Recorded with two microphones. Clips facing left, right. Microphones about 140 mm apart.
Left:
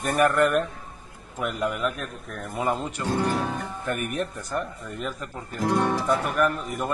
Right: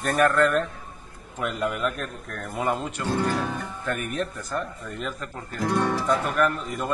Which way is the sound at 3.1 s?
15° left (ahead or behind).